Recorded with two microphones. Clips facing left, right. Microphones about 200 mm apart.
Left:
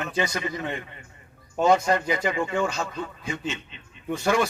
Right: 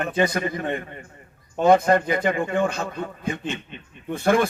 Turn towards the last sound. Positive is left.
turn(degrees=-55)  # may be behind; listen again after turning